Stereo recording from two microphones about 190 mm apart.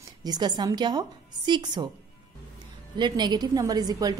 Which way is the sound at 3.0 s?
25° right (ahead or behind).